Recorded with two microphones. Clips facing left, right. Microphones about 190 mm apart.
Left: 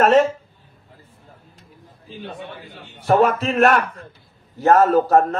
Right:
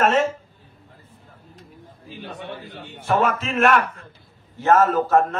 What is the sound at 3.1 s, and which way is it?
A man's voice, 35° left (ahead or behind).